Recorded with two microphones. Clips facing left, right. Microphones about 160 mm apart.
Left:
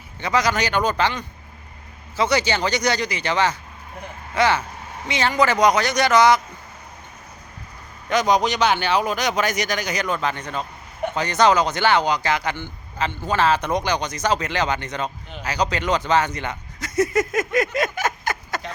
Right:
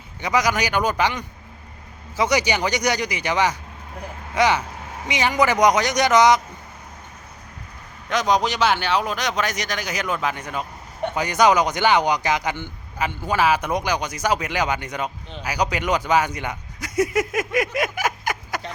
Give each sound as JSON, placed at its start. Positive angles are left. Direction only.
{"t": 0.2, "sound": "speech", "side_deg": -15}
{"t": 8.1, "sound": "speech", "side_deg": 0}